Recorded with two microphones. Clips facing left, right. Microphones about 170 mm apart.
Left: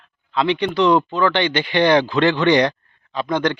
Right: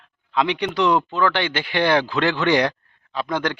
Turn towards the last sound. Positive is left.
turn(degrees=-5)  # may be behind; listen again after turning